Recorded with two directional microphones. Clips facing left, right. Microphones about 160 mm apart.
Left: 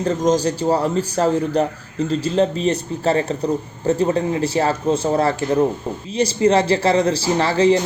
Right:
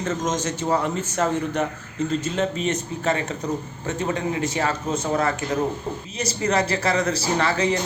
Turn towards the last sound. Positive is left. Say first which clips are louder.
# left 6 dB
turn(degrees=30)  # may be behind; listen again after turning